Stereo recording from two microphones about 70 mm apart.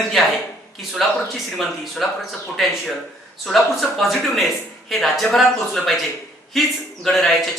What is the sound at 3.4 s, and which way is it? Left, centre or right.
Speech, centre.